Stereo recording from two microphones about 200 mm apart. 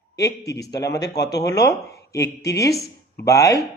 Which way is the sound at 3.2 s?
15° left (ahead or behind).